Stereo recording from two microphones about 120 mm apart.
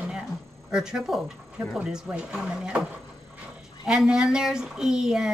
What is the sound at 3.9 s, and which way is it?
A woman's voice, 5° right (ahead or behind).